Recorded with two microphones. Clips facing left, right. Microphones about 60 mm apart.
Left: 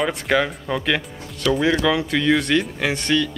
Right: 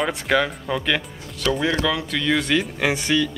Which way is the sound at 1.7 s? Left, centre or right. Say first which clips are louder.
Left 3 dB; centre.